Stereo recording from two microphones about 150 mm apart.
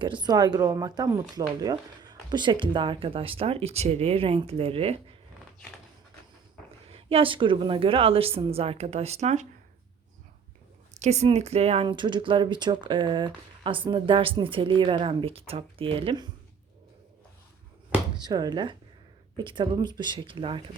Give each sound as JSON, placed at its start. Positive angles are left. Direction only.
{"t": 0.0, "sound": "speech", "side_deg": -30}
{"t": 6.9, "sound": "speech", "side_deg": -40}
{"t": 11.0, "sound": "speech", "side_deg": -45}
{"t": 18.2, "sound": "speech", "side_deg": -25}